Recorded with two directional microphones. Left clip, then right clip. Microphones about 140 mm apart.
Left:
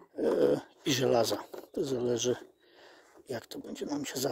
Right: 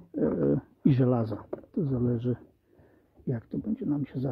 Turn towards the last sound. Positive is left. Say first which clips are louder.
# right 1 dB
turn(degrees=20)  # may be behind; listen again after turning